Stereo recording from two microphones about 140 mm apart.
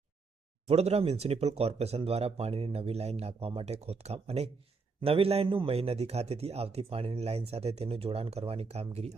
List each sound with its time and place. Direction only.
0.7 s a man's voice: 45° right (ahead or behind)